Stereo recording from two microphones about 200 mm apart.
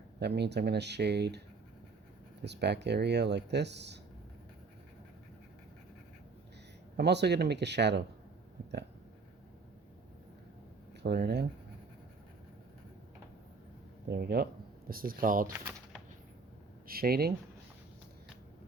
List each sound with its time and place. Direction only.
0.2 s speech: 55° right (ahead or behind)
2.4 s speech: 55° right (ahead or behind)
6.9 s speech: 55° right (ahead or behind)
11.0 s speech: 55° right (ahead or behind)
14.1 s speech: 55° right (ahead or behind)
16.8 s speech: 50° right (ahead or behind)